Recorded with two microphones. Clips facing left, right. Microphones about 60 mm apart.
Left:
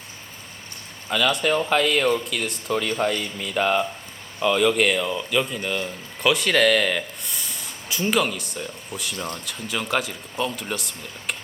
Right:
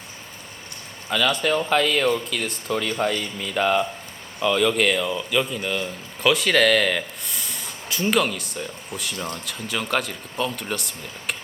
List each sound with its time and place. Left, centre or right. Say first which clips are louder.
1.1 s speech: even; centre